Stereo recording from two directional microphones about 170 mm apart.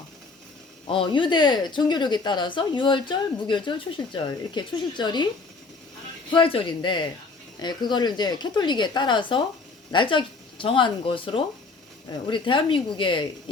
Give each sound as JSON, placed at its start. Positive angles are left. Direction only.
{"t": 0.9, "sound": "speech", "side_deg": 30}
{"t": 6.3, "sound": "speech", "side_deg": 30}